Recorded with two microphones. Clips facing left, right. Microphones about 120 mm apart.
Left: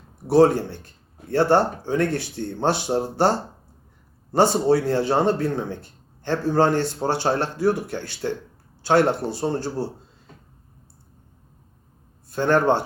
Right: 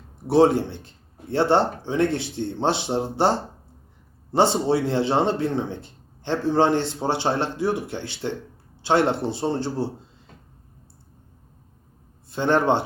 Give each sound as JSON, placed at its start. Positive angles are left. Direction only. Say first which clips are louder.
{"t": 0.3, "sound": "speech", "louder": "left 1 dB", "side_deg": -20}
{"t": 12.3, "sound": "speech", "louder": "left 1 dB", "side_deg": -20}